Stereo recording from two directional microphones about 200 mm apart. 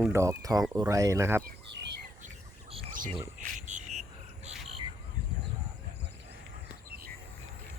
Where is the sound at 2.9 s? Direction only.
40° right (ahead or behind).